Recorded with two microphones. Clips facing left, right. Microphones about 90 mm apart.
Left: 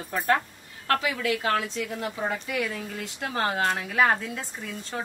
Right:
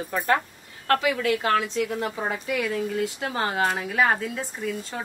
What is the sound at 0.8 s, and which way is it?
Speech, 40° right (ahead or behind).